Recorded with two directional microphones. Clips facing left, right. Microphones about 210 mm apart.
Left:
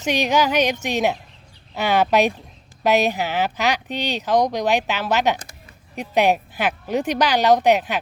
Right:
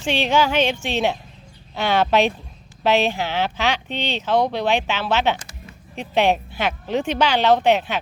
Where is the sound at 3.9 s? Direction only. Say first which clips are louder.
Left 1 dB; 10° left (ahead or behind).